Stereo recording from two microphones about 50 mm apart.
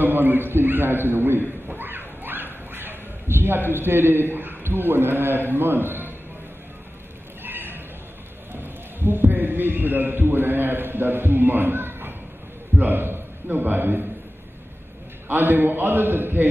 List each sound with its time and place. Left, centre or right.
0.0 s a man's voice: right
1.7 s a sound: right
3.7 s a man's voice: right
7.4 s neigh: right
9.0 s a man's voice: right
15.2 s a man's voice: right